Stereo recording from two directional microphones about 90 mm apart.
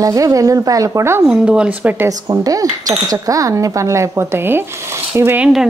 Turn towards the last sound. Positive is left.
turn(degrees=-10)  # may be behind; listen again after turning